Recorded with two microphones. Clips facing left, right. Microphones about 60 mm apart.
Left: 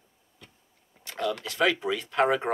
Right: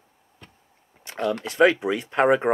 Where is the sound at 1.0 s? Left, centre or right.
Right.